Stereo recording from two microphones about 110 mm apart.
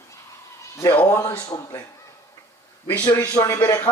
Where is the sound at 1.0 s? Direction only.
25° left (ahead or behind).